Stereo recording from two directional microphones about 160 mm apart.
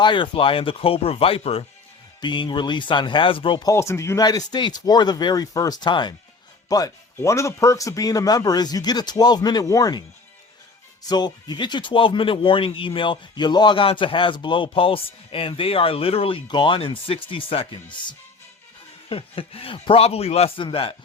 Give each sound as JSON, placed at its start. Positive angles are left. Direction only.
{"t": 0.0, "sound": "speech", "side_deg": 30}
{"t": 11.1, "sound": "speech", "side_deg": 25}
{"t": 19.0, "sound": "speech", "side_deg": 35}